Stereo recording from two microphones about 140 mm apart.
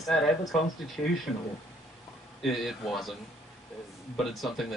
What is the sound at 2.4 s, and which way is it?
Speech, centre (ahead or behind).